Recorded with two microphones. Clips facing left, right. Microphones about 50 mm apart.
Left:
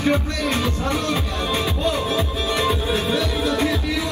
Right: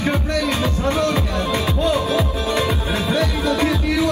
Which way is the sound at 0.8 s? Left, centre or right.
Right.